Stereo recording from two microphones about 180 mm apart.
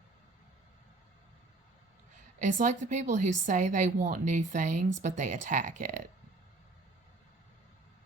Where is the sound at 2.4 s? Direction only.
45° right (ahead or behind).